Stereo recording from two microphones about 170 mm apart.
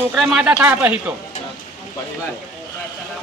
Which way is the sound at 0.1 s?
Centre (ahead or behind).